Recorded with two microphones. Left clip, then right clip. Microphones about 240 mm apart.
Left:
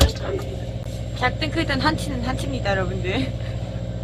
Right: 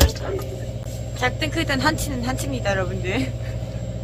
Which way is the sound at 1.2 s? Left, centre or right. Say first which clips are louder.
Even; centre.